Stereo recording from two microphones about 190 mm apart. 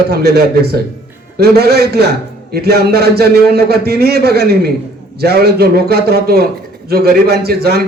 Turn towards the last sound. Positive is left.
turn(degrees=-55)  # may be behind; listen again after turning